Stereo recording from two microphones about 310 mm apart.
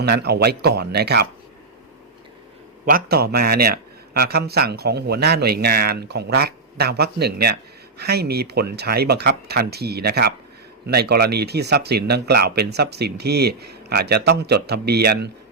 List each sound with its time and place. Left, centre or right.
0.0 s a man's voice: right
2.8 s a man's voice: right